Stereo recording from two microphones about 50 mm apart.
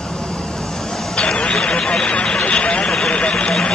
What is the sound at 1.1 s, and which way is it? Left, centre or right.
Vehicle, left.